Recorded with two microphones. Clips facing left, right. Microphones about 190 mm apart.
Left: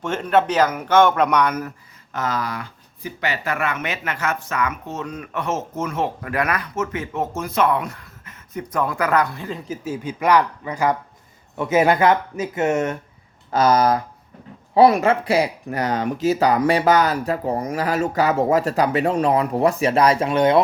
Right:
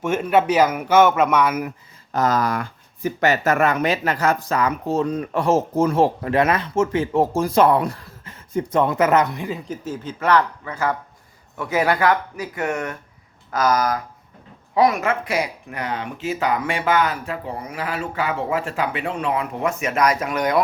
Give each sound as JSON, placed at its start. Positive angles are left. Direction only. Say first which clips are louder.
{"t": 0.0, "sound": "speech", "louder": "right 1 dB", "side_deg": -10}
{"t": 2.1, "sound": "speech", "louder": "right 5 dB", "side_deg": -40}
{"t": 9.6, "sound": "speech", "louder": "left 2 dB", "side_deg": 10}